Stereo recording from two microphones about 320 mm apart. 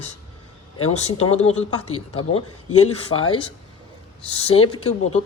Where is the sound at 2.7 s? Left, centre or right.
Left.